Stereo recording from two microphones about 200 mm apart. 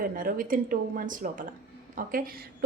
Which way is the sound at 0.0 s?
45° right (ahead or behind).